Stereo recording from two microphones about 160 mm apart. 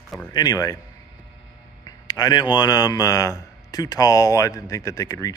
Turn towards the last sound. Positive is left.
turn(degrees=20)  # may be behind; listen again after turning